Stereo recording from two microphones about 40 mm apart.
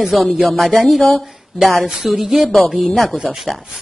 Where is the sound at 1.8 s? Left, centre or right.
Centre.